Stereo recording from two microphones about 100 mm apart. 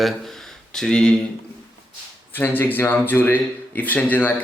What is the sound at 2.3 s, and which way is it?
A man's voice, 20° left (ahead or behind).